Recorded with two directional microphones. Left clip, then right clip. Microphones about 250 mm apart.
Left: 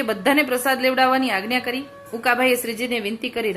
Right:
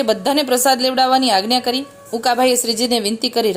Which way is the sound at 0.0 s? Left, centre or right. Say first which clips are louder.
Right 3 dB; right.